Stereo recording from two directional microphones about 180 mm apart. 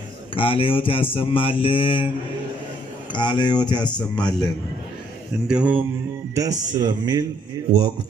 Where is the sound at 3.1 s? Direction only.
25° left (ahead or behind).